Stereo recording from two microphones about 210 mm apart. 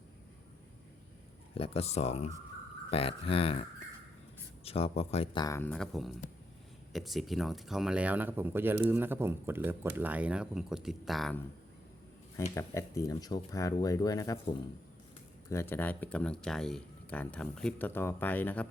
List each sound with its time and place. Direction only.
1.5 s speech: 30° left (ahead or behind); by 11.3 s centre (ahead or behind)
12.5 s speech: 15° left (ahead or behind)
15.4 s speech: 10° left (ahead or behind)